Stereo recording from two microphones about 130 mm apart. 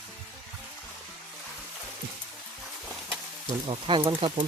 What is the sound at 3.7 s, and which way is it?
Speech, 40° right (ahead or behind).